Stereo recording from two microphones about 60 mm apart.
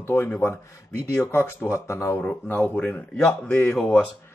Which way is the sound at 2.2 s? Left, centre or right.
Left.